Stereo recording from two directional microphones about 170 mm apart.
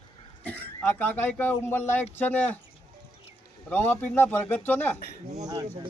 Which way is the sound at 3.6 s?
10° left (ahead or behind).